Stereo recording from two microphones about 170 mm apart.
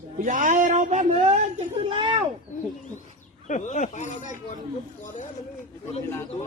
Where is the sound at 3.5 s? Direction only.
45° left (ahead or behind).